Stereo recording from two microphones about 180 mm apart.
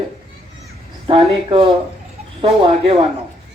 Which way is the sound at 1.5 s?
30° right (ahead or behind).